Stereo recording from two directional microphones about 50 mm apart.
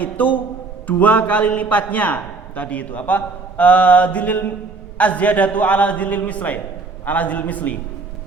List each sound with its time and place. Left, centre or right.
0.0 s a man's voice: left